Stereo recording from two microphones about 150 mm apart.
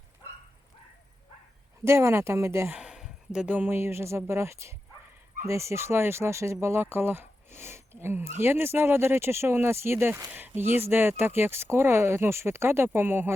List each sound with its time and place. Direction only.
1.8 s speech: 15° right (ahead or behind)
2.7 s speech: 5° right (ahead or behind)